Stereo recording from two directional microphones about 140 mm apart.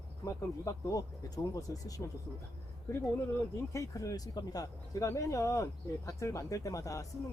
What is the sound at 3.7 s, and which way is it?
Speech, 20° left (ahead or behind).